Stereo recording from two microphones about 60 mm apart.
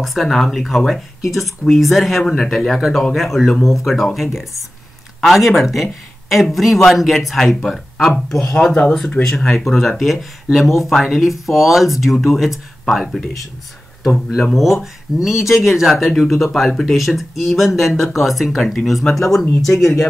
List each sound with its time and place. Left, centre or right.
0.0 s speech: centre
14.5 s speech: centre